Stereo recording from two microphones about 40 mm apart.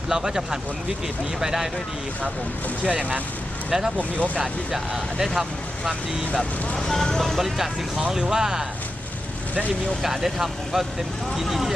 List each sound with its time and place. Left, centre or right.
0.1 s speech: centre
2.8 s speech: right
3.7 s speech: centre
3.9 s speech: right
4.7 s speech: centre
6.7 s speech: centre
7.3 s speech: centre
8.2 s speech: centre
10.0 s speech: centre